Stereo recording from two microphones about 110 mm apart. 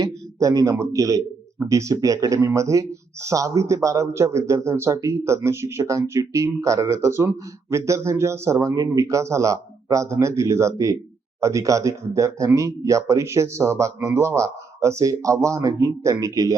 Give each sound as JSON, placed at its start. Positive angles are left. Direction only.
{"t": 0.0, "sound": "speech", "side_deg": -30}